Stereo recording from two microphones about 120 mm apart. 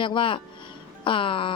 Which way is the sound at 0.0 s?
45° left (ahead or behind).